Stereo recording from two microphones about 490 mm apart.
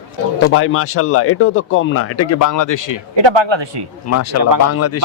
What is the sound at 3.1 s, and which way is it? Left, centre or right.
Speech, right.